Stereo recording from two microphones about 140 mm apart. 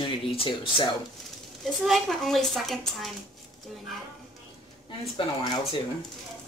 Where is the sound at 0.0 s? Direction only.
35° left (ahead or behind).